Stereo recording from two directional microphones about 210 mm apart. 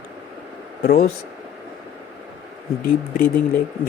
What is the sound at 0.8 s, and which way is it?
Speech, 50° left (ahead or behind).